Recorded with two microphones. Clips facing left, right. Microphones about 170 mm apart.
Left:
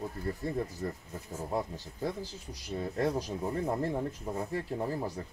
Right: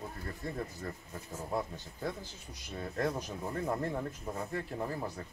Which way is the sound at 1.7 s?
35° left (ahead or behind).